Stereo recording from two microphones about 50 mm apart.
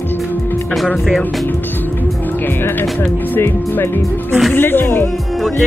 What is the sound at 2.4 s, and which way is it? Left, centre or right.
Speech, left.